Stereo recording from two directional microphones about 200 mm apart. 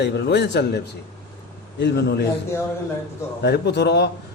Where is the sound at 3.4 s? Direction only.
55° left (ahead or behind).